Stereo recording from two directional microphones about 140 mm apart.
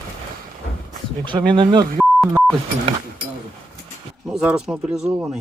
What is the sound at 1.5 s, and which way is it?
Speech, 30° right (ahead or behind).